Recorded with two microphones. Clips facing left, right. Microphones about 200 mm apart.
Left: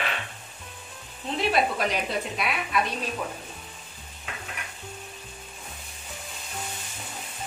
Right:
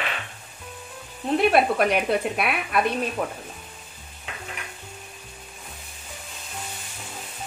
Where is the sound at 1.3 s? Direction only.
60° right (ahead or behind).